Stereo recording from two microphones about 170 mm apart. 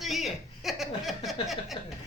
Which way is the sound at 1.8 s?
30° left (ahead or behind).